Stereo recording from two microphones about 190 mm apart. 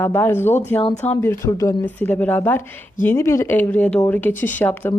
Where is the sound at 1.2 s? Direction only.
15° left (ahead or behind).